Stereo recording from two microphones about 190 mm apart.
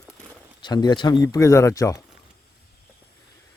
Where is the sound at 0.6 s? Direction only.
20° left (ahead or behind).